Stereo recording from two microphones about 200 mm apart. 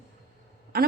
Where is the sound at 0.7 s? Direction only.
45° right (ahead or behind).